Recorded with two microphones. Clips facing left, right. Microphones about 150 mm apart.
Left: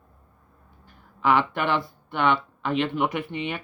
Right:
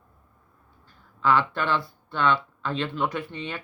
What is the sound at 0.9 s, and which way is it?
Speech, 15° left (ahead or behind).